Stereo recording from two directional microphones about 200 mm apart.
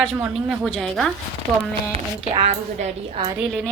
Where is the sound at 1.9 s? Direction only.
30° right (ahead or behind).